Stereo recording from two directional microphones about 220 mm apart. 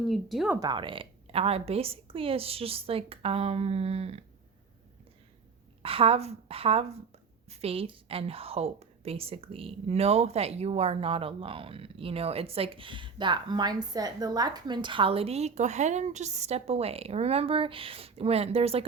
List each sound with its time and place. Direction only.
0.1 s speech: centre (ahead or behind)
0.6 s a woman's voice: 20° right (ahead or behind)
5.8 s a woman's voice: 25° right (ahead or behind)